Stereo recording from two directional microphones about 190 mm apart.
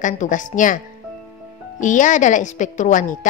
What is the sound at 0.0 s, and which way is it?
Speech, 40° left (ahead or behind).